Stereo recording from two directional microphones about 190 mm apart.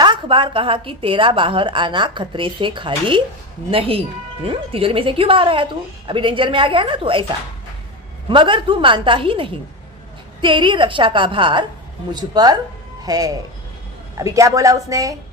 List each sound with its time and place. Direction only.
0.0 s a woman's voice: 25° right (ahead or behind)